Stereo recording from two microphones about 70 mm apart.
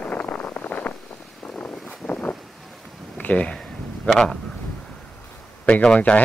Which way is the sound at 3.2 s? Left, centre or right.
Centre.